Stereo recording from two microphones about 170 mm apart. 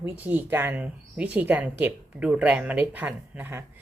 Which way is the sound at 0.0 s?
10° right (ahead or behind).